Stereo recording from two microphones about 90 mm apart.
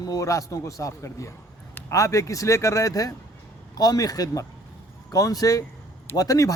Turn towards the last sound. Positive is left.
turn(degrees=40)  # may be behind; listen again after turning